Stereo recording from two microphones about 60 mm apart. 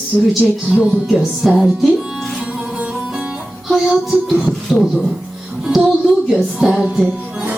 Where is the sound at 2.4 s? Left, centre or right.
Right.